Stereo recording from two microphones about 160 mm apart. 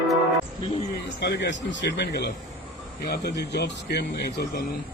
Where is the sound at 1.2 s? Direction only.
90° left.